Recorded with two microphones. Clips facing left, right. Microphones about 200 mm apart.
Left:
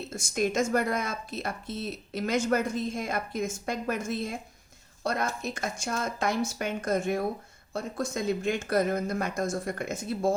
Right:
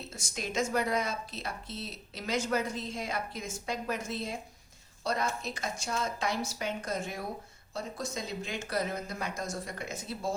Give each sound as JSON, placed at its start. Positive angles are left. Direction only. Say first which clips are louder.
{"t": 0.1, "sound": "a woman's voice", "louder": "left 10 dB", "side_deg": 50}